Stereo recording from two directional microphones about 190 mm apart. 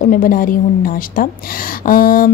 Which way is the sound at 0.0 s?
45° left (ahead or behind).